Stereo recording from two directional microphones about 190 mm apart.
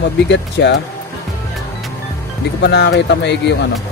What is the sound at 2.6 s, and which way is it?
Speech, 60° left (ahead or behind).